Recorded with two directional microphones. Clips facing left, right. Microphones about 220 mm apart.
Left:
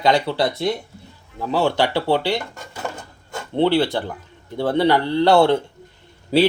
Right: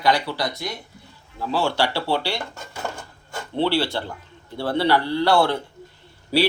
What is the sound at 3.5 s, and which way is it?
Speech, 20° left (ahead or behind).